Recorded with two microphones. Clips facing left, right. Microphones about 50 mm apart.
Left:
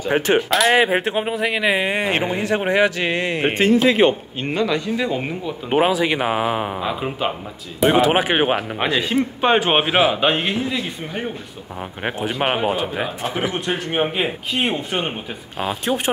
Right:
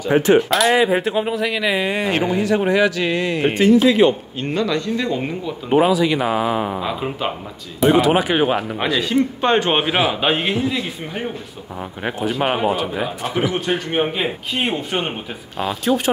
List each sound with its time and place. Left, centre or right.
0.7 s speech: left
4.5 s speech: centre
5.7 s speech: left
6.7 s speech: centre
7.8 s speech: left
9.4 s speech: centre
10.2 s a man's voice: centre
12.0 s speech: left
13.2 s speech: left
13.7 s a man's voice: centre